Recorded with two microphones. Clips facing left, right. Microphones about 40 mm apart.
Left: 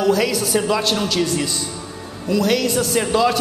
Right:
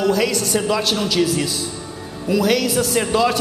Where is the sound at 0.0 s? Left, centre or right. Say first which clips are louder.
Left 1 dB; centre.